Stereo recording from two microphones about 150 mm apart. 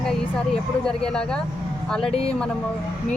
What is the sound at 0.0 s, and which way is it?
Speech, 5° left (ahead or behind).